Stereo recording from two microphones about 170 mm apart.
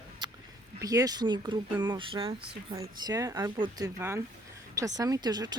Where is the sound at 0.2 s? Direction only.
25° right (ahead or behind).